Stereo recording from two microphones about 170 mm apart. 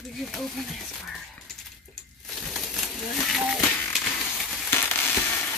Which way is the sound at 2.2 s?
Centre (ahead or behind).